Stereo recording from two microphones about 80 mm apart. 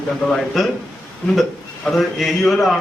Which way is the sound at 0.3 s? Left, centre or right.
Centre.